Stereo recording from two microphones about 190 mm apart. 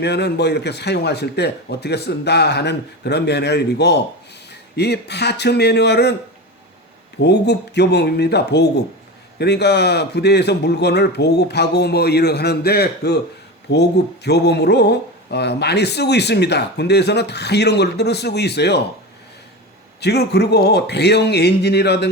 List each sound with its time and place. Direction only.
0.0 s speech: 60° left (ahead or behind)
7.2 s speech: 65° left (ahead or behind)
14.3 s speech: 60° left (ahead or behind)
20.0 s speech: 60° left (ahead or behind)